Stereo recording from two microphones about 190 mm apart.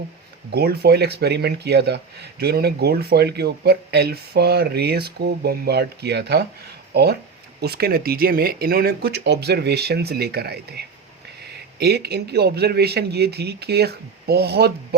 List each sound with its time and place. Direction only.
0.5 s speech: 55° right (ahead or behind)